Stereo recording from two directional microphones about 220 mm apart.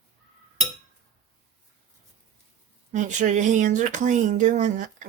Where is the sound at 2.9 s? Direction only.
35° right (ahead or behind).